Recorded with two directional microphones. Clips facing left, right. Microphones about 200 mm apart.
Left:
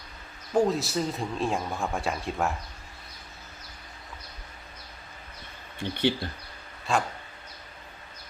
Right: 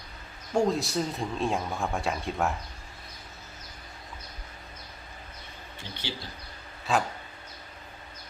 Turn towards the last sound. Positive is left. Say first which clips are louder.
# even
turn(degrees=0)  # may be behind; listen again after turning